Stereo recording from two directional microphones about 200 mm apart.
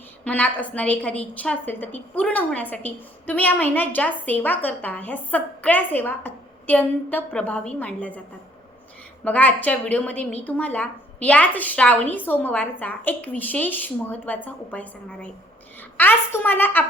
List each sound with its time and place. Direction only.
0.3 s a woman's voice: 5° left (ahead or behind)
9.2 s a woman's voice: 10° left (ahead or behind)